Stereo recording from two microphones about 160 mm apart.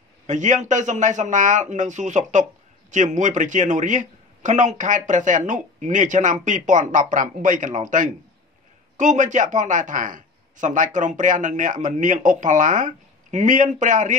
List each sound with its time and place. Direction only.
0.3 s a man's voice: 50° right (ahead or behind)